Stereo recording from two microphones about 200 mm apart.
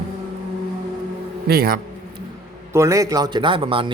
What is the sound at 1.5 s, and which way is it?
Speech, 50° right (ahead or behind).